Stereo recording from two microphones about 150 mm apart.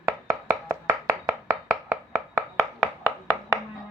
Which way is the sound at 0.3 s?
15° right (ahead or behind).